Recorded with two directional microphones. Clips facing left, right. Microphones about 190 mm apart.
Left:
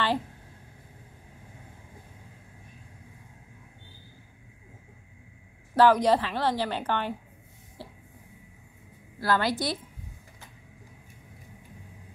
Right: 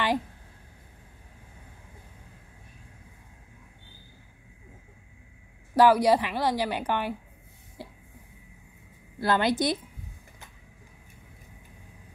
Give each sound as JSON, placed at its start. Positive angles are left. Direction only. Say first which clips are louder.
{"t": 5.8, "sound": "a woman's voice", "louder": "right 1 dB", "side_deg": -10}
{"t": 7.8, "sound": "a sound", "louder": "right 1 dB", "side_deg": -15}
{"t": 9.2, "sound": "a woman's voice", "louder": "right 2 dB", "side_deg": -20}